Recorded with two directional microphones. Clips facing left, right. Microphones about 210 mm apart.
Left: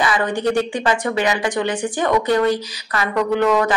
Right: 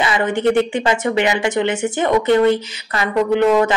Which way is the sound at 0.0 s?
25° right (ahead or behind).